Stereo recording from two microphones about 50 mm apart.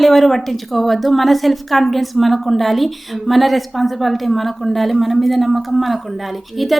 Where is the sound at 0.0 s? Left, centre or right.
Centre.